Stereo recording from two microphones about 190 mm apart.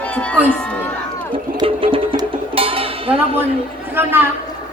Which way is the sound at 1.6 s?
30° right (ahead or behind).